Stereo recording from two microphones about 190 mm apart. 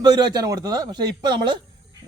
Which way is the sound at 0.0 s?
20° right (ahead or behind).